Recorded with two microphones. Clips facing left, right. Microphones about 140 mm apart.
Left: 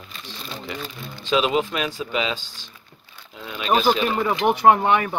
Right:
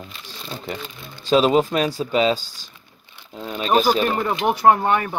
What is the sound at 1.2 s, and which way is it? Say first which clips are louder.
Speech: right 5 dB; 40° right (ahead or behind).